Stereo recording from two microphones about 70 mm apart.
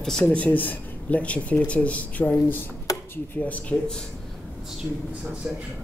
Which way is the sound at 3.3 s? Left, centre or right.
Left.